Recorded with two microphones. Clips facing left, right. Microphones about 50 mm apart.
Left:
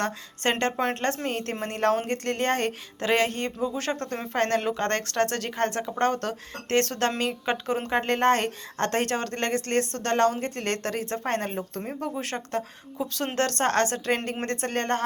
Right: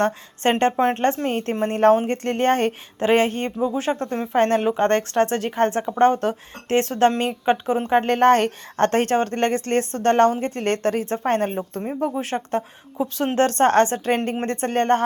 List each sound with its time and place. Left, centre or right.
0.4 s a woman's voice: right
0.9 s a woman's voice: centre
7.9 s a woman's voice: right